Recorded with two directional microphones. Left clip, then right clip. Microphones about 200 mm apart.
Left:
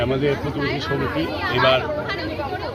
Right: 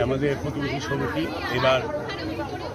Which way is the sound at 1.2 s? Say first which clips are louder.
Left 4 dB; 35° left (ahead or behind).